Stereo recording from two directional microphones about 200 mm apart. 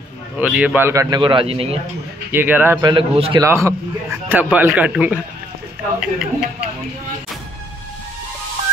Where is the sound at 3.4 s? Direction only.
15° right (ahead or behind).